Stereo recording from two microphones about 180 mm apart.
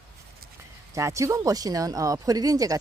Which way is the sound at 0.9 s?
15° right (ahead or behind).